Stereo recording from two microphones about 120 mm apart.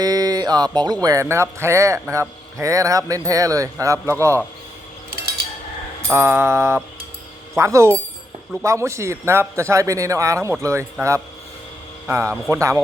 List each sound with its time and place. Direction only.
0.0 s a sound: 30° right (ahead or behind)
1.0 s a man's voice: 25° right (ahead or behind)
6.1 s a man's voice: 20° right (ahead or behind)
12.0 s a man's voice: 20° right (ahead or behind)